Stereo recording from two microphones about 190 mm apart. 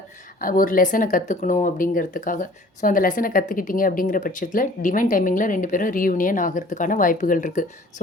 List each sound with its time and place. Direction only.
0.3 s speech: 45° left (ahead or behind)